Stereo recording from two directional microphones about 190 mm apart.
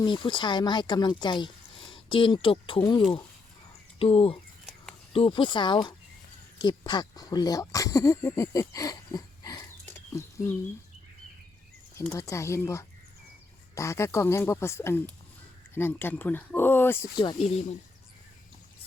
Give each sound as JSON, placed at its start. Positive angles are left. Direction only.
{"t": 0.0, "sound": "speech", "side_deg": 25}
{"t": 12.1, "sound": "speech", "side_deg": 15}
{"t": 17.2, "sound": "speech", "side_deg": 25}